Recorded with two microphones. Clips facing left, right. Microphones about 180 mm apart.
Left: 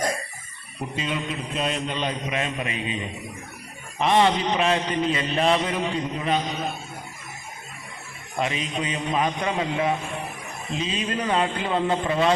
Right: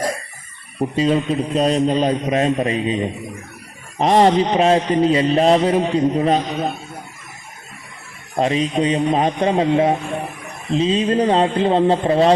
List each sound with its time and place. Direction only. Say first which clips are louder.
0.9 s mantra: right 12 dB; 35° right (ahead or behind)
8.4 s mantra: right 9 dB; 35° right (ahead or behind)